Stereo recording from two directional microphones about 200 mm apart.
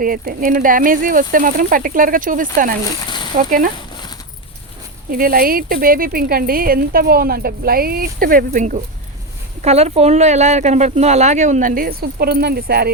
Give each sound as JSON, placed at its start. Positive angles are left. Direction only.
{"t": 0.0, "sound": "speech", "side_deg": -45}
{"t": 5.1, "sound": "speech", "side_deg": -45}